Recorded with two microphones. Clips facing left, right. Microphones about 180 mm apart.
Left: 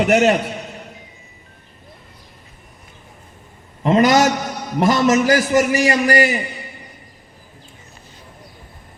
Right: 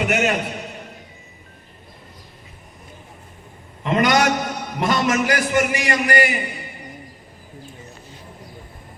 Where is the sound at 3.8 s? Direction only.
35° left (ahead or behind).